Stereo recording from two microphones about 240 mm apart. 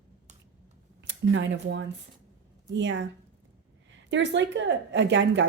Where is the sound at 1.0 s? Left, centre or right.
Right.